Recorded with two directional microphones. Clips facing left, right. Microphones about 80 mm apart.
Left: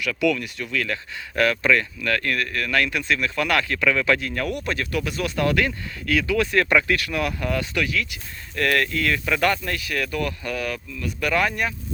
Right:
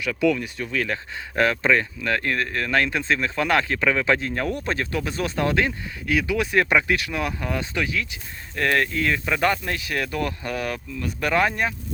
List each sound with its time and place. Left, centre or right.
0.0 s speech: right